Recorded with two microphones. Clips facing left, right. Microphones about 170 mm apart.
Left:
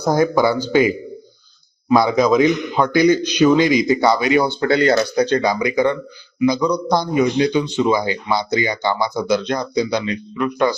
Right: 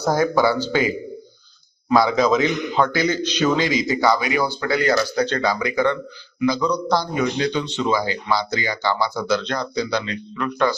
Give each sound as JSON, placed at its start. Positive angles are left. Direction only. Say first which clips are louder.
{"t": 0.0, "sound": "speech", "louder": "left 2 dB", "side_deg": 15}
{"t": 1.9, "sound": "speech", "louder": "left 3 dB", "side_deg": 20}